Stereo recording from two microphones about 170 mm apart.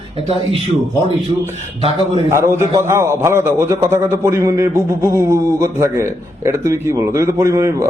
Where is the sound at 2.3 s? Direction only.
15° right (ahead or behind).